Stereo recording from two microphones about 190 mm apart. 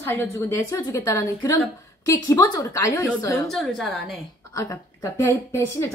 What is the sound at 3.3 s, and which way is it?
Speech, centre (ahead or behind).